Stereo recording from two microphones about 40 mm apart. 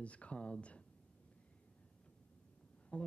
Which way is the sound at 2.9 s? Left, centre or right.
Left.